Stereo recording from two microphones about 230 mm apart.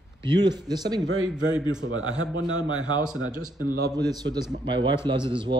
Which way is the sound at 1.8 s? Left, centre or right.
Right.